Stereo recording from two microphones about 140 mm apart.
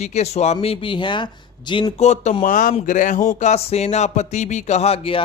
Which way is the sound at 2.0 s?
55° left (ahead or behind).